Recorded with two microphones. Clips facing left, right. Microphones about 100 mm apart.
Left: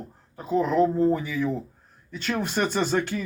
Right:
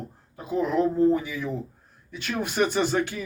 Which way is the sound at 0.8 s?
40° left (ahead or behind).